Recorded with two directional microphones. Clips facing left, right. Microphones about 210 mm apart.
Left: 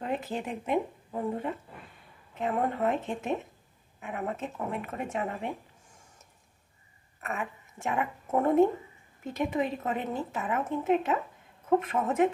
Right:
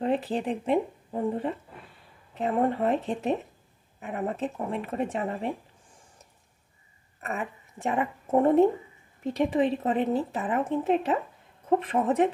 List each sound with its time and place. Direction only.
0.0 s a woman's voice: 35° right (ahead or behind)
7.2 s a woman's voice: 35° right (ahead or behind)